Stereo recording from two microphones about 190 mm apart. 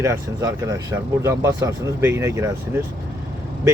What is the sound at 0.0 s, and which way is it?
Speech, 15° right (ahead or behind).